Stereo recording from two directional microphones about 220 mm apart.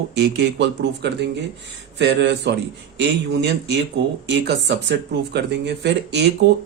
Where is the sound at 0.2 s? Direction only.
55° right (ahead or behind).